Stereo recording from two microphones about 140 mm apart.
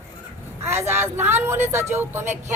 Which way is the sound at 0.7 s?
15° right (ahead or behind).